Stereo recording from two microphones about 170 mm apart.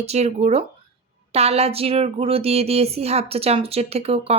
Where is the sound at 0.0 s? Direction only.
40° right (ahead or behind).